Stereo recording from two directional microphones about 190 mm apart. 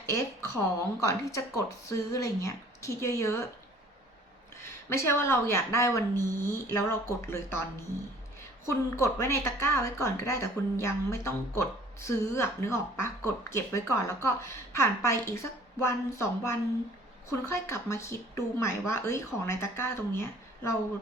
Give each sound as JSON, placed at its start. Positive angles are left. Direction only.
{"t": 0.1, "sound": "a woman's voice", "side_deg": 15}
{"t": 4.9, "sound": "a woman's voice", "side_deg": 15}